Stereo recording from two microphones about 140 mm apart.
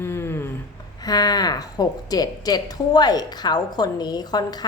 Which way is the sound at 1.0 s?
30° left (ahead or behind).